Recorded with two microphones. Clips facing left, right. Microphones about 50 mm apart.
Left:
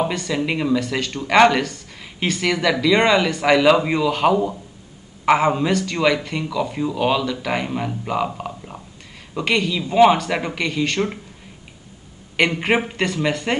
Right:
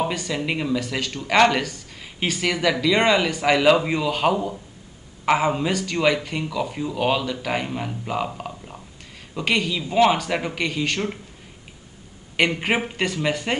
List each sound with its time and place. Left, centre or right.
0.1 s speech: centre
1.6 s a woman's voice: centre
7.6 s speech: centre
9.4 s speech: centre
12.4 s speech: centre